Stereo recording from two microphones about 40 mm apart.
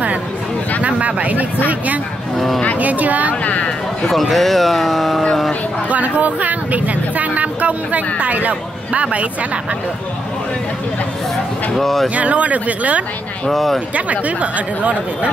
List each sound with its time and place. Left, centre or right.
0.8 s speech: right
2.3 s speech: centre
2.8 s speech: right
3.4 s speech: left
4.1 s speech: centre
5.9 s speech: right
11.7 s speech: centre
12.2 s speech: right
13.5 s speech: centre
13.9 s speech: right